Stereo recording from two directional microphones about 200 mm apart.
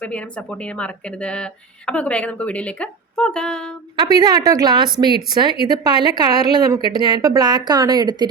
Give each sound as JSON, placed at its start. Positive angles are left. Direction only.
{"t": 0.0, "sound": "a woman's voice", "side_deg": 5}
{"t": 3.9, "sound": "a woman's voice", "side_deg": -20}